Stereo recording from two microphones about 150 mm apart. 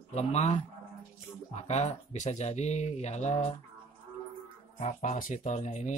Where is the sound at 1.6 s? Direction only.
50° left (ahead or behind).